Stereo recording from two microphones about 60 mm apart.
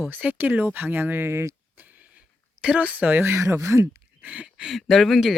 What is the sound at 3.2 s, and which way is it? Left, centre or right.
Speech, right.